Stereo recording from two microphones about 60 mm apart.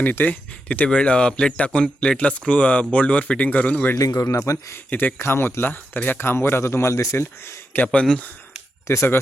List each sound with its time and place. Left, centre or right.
0.0 s speech: left
3.9 s speech: left
4.9 s speech: left
5.1 s speech: left
8.9 s speech: left